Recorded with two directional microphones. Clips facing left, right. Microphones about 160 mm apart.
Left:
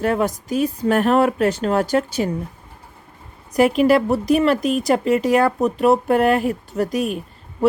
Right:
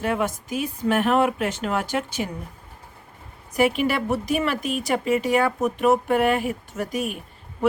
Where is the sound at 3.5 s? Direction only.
35° left (ahead or behind).